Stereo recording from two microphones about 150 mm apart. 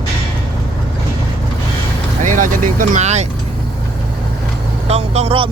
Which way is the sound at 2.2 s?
60° right (ahead or behind).